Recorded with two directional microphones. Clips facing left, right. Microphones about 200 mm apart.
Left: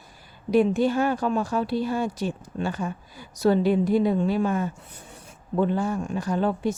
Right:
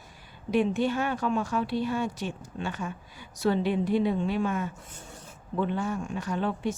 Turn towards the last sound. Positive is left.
turn(degrees=40)  # may be behind; listen again after turning